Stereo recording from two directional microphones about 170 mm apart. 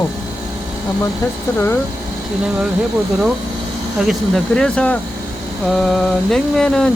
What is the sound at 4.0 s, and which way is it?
Mantra, centre (ahead or behind).